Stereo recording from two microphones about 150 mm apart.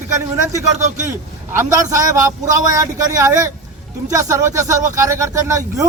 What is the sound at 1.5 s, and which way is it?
Speech, 20° right (ahead or behind).